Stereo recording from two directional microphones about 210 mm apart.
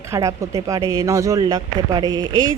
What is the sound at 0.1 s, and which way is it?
Speech, 15° right (ahead or behind).